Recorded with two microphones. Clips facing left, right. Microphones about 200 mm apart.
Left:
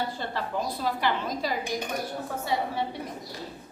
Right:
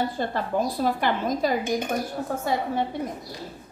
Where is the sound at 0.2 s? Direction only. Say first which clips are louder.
Right 6 dB; 50° right (ahead or behind).